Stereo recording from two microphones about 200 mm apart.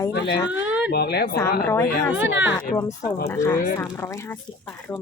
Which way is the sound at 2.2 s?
65° left (ahead or behind).